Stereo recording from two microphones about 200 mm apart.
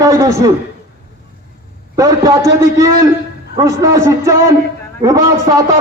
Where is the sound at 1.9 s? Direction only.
15° right (ahead or behind).